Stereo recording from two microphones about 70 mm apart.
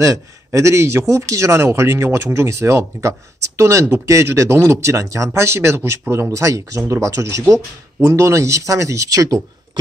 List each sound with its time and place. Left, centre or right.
0.0 s speech: right